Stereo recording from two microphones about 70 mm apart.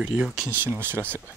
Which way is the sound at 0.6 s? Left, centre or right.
Right.